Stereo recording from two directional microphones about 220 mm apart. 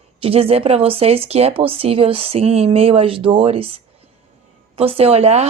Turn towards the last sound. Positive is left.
turn(degrees=-30)  # may be behind; listen again after turning